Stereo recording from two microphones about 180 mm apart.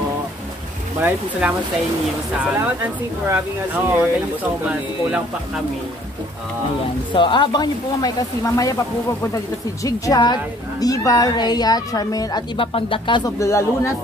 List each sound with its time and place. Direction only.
1.4 s speech: 5° right (ahead or behind)
7.2 s a woman's voice: 25° left (ahead or behind)
9.8 s a woman's voice: 20° left (ahead or behind)